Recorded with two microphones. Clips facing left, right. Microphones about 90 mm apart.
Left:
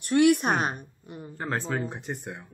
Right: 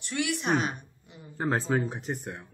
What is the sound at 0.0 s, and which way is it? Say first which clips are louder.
A woman's voice: left 10 dB; 50° left (ahead or behind).